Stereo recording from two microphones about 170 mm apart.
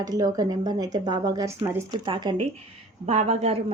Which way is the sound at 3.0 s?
40° right (ahead or behind).